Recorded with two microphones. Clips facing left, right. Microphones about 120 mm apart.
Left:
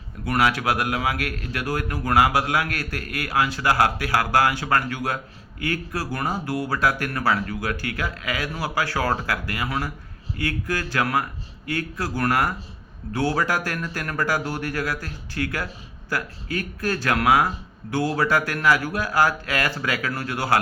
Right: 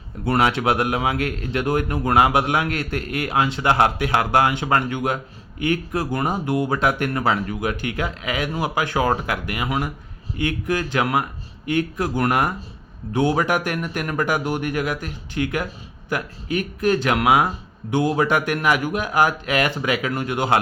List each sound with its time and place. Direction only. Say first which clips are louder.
0.3 s a man's voice: right 3 dB; 25° right (ahead or behind)